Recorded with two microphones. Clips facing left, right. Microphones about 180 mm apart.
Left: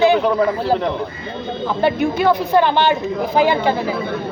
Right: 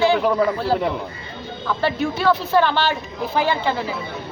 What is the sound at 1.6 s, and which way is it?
Speech, 15° left (ahead or behind).